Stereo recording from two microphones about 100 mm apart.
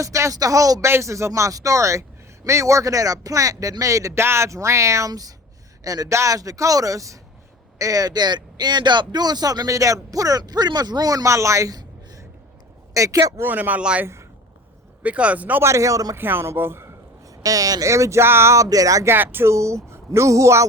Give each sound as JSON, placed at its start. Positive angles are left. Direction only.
{"t": 0.0, "sound": "speech", "side_deg": -30}
{"t": 13.5, "sound": "speech", "side_deg": -15}
{"t": 15.6, "sound": "speech", "side_deg": -30}
{"t": 16.1, "sound": "speech", "side_deg": -20}
{"t": 17.4, "sound": "speech", "side_deg": -35}
{"t": 19.1, "sound": "speech", "side_deg": -20}